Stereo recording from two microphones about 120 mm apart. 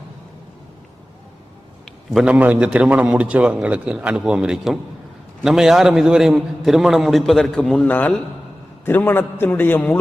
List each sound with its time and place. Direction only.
1.8 s a man's voice: centre (ahead or behind); by 10.0 s 15° left (ahead or behind)